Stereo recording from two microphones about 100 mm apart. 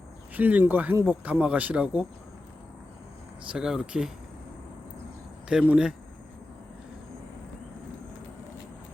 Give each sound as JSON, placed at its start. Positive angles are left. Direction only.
{"t": 0.3, "sound": "speech", "side_deg": -15}
{"t": 3.5, "sound": "speech", "side_deg": -5}
{"t": 5.5, "sound": "speech", "side_deg": -10}